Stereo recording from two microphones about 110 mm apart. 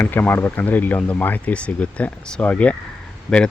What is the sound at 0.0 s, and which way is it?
Speech, 15° left (ahead or behind).